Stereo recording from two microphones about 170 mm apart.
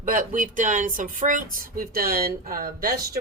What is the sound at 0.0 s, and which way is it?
Speech, 50° right (ahead or behind).